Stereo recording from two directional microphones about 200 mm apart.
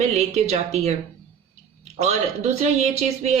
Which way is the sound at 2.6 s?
35° right (ahead or behind).